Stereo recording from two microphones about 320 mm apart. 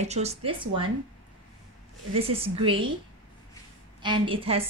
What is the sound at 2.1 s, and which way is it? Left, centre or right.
Speech, centre.